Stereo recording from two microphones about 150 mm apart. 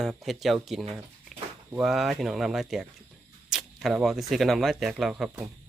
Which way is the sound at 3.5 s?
Centre (ahead or behind).